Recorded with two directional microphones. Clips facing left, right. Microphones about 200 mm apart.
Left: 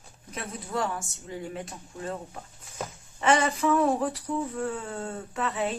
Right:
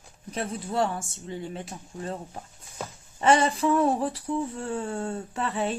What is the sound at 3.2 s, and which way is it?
Speech, 30° right (ahead or behind).